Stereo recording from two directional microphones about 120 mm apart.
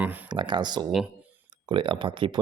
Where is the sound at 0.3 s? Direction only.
40° right (ahead or behind).